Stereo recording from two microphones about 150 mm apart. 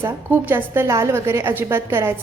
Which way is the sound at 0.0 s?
15° right (ahead or behind).